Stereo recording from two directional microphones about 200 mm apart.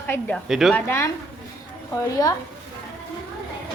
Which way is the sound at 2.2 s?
20° left (ahead or behind).